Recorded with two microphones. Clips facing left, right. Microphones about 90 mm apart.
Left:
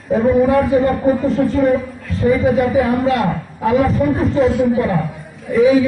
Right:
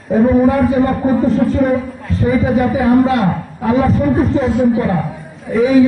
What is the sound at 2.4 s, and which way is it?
A man's voice, 35° right (ahead or behind).